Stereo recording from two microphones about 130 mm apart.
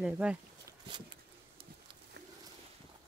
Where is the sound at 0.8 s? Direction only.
35° right (ahead or behind).